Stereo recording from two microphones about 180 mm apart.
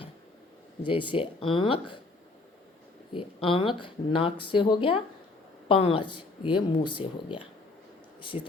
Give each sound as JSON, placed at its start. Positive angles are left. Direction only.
{"t": 0.9, "sound": "speech", "side_deg": 30}
{"t": 3.1, "sound": "speech", "side_deg": 30}